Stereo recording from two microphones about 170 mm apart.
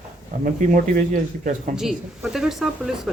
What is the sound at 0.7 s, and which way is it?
Speech, 50° right (ahead or behind).